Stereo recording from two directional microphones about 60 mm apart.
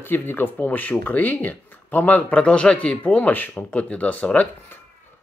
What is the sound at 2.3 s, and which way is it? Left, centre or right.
Speech, centre.